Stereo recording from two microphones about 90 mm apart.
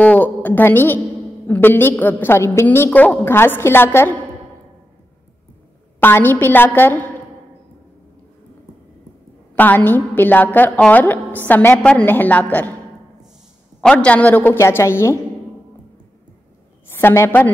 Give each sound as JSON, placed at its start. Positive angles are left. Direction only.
{"t": 0.0, "sound": "a woman's voice", "side_deg": 20}
{"t": 5.9, "sound": "a woman's voice", "side_deg": 25}
{"t": 9.6, "sound": "a woman's voice", "side_deg": 20}
{"t": 13.7, "sound": "a man's voice", "side_deg": 15}
{"t": 14.6, "sound": "a woman's voice", "side_deg": 30}
{"t": 16.9, "sound": "a woman's voice", "side_deg": 30}